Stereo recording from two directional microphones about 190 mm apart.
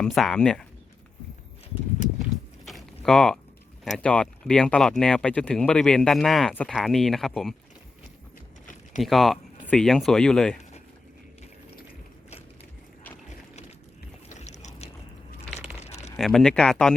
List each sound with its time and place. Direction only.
0.0 s speech: centre (ahead or behind)
2.6 s a sound: centre (ahead or behind)
3.8 s speech: 5° left (ahead or behind)
9.0 s speech: centre (ahead or behind)
14.3 s a sound: 35° left (ahead or behind)
16.1 s speech: centre (ahead or behind)